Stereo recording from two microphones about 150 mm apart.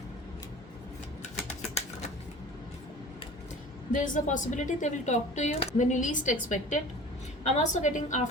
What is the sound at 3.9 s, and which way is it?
A woman's voice, 55° left (ahead or behind).